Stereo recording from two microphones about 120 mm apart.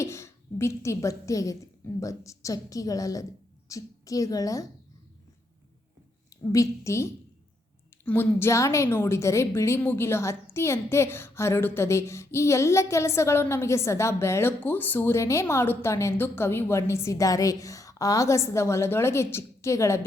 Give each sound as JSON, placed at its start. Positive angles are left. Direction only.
{"t": 0.0, "sound": "a woman's voice", "side_deg": 25}
{"t": 6.5, "sound": "a woman's voice", "side_deg": 25}